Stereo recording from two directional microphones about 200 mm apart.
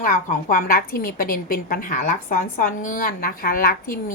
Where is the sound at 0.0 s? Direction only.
40° left (ahead or behind).